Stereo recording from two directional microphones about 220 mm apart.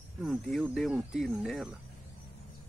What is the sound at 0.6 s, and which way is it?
Speech, 5° right (ahead or behind).